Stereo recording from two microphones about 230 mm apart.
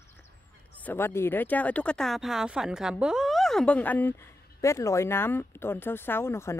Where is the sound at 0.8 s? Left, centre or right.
Centre.